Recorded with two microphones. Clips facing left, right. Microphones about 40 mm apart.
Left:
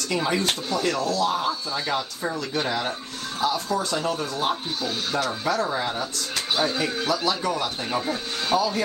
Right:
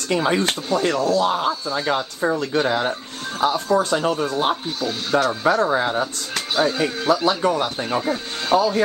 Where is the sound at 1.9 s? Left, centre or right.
Right.